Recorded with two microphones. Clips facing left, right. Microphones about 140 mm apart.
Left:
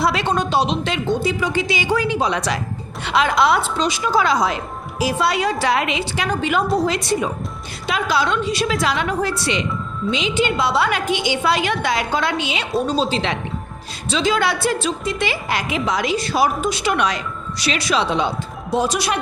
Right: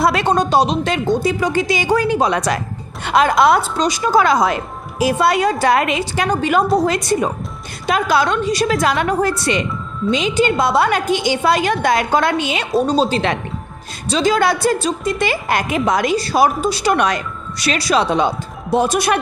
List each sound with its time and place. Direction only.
0.0 s a woman's voice: 50° right (ahead or behind)